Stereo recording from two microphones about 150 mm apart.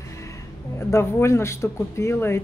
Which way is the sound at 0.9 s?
20° left (ahead or behind).